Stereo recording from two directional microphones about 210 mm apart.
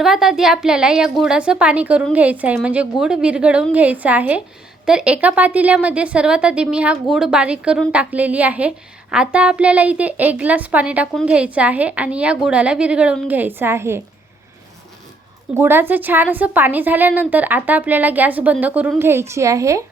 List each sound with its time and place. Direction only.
0.0 s a woman's voice: centre (ahead or behind)
15.5 s a woman's voice: 10° right (ahead or behind)